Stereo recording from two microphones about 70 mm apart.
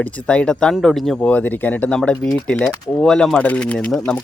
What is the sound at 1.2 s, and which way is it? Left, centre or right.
Speech, centre.